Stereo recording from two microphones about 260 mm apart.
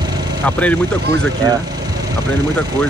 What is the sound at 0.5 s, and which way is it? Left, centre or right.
Speech, centre.